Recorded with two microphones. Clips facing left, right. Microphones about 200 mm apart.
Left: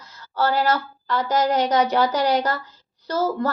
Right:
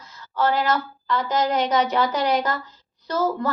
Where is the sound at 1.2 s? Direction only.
45° left (ahead or behind).